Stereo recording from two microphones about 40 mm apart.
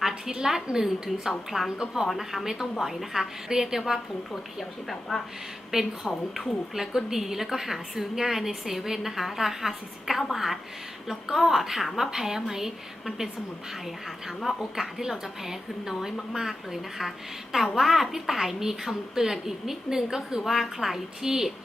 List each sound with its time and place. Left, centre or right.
0.0 s a woman's voice: centre
4.9 s a woman's voice: centre
5.7 s a woman's voice: centre